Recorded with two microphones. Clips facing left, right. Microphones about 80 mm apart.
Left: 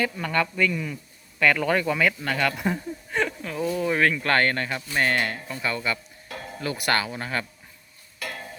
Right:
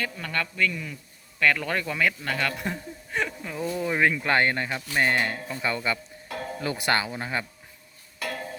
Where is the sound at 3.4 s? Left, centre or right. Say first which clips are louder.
Left 3 dB; centre.